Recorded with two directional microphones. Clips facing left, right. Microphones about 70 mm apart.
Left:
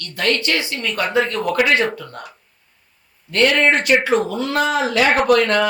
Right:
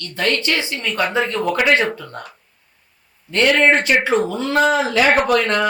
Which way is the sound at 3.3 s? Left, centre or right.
Right.